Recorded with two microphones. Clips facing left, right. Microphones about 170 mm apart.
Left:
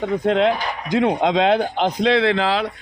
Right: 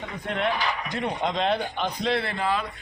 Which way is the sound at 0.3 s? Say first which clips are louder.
Left 7 dB; 90° left.